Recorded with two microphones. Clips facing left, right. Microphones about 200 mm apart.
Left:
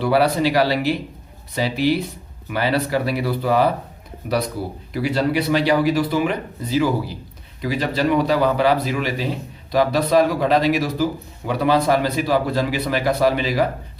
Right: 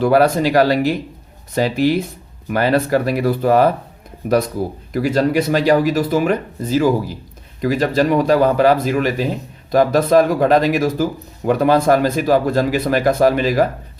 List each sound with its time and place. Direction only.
0.0 s speech: 45° right (ahead or behind)
4.9 s speech: 45° right (ahead or behind)